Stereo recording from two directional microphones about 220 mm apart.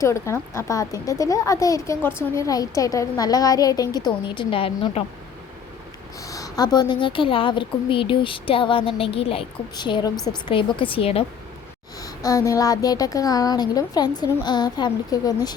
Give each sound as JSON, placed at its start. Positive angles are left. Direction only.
{"t": 0.0, "sound": "speech", "side_deg": 15}
{"t": 6.2, "sound": "a woman's voice", "side_deg": 15}